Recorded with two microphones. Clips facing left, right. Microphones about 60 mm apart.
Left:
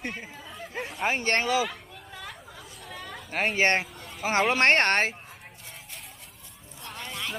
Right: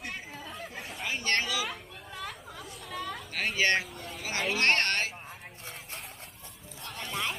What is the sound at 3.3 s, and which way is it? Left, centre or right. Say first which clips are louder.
Speech: left 4 dB; left.